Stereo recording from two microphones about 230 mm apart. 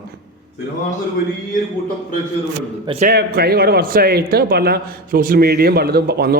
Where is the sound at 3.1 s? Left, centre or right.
Right.